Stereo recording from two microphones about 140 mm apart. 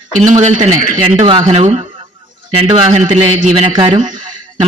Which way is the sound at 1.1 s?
40° right (ahead or behind).